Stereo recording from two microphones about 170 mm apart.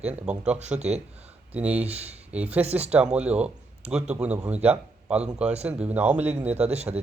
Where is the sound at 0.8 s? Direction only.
40° right (ahead or behind).